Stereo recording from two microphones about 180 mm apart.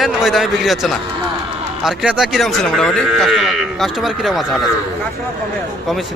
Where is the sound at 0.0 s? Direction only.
Centre (ahead or behind).